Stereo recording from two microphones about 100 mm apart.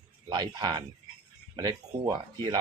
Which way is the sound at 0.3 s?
50° right (ahead or behind).